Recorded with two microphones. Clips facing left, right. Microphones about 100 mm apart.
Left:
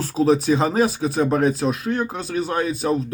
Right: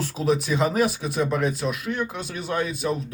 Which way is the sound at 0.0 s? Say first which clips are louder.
Left 6 dB; 35° left (ahead or behind).